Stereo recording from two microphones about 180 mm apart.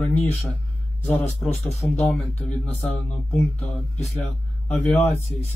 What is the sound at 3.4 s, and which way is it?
Speech, centre (ahead or behind).